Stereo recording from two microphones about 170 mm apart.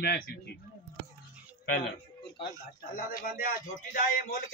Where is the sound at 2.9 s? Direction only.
60° left (ahead or behind).